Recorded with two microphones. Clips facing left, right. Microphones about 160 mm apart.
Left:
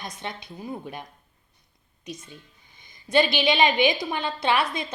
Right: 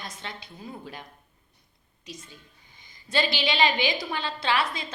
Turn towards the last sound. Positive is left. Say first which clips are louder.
# left 3 dB
turn(degrees=20)  # may be behind; listen again after turning